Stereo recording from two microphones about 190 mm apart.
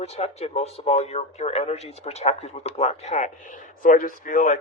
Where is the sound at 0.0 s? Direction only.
35° left (ahead or behind).